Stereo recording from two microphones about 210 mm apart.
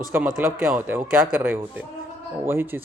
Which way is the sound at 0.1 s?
10° right (ahead or behind).